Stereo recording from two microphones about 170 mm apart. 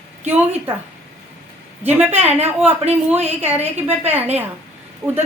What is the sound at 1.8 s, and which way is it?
Speech, 10° right (ahead or behind).